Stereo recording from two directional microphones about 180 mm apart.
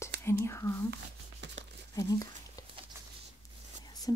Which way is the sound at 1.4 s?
80° right.